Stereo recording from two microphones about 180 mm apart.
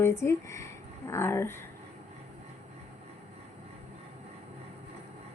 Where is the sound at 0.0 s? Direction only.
15° left (ahead or behind).